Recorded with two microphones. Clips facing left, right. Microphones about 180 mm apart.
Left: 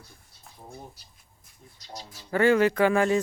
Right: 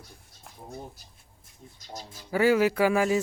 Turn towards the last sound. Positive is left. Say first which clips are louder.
# left 1 dB
turn(degrees=-5)  # may be behind; listen again after turning